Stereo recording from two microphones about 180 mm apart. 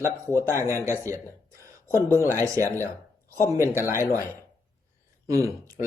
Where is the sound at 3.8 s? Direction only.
15° right (ahead or behind).